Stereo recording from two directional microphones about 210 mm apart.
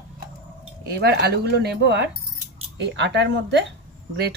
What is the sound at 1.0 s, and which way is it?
Speech, 50° right (ahead or behind).